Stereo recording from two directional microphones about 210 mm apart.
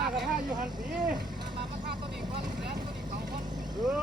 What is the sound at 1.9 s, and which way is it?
Vehicle, 50° right (ahead or behind).